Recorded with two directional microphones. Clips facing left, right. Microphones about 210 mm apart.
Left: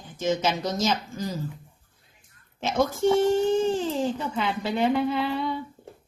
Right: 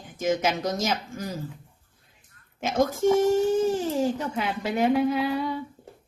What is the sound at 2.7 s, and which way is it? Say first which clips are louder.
Speech: even; 50° right (ahead or behind).